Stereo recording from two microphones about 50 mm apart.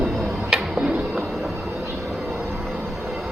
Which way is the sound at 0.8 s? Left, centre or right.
Right.